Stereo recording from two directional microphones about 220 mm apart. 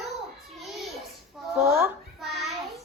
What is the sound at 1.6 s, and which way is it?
Speech, 10° right (ahead or behind).